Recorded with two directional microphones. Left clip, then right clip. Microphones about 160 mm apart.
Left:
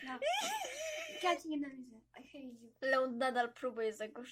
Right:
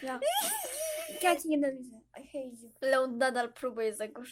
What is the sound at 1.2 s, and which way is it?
Speech, 55° right (ahead or behind).